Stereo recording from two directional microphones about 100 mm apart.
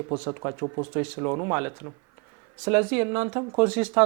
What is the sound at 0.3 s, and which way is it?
Speech, 20° right (ahead or behind).